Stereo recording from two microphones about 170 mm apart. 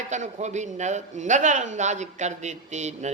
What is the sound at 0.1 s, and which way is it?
Speech, 45° right (ahead or behind).